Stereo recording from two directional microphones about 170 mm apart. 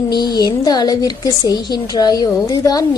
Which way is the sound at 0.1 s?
25° left (ahead or behind).